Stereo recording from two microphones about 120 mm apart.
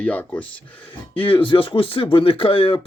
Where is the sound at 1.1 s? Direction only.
45° left (ahead or behind).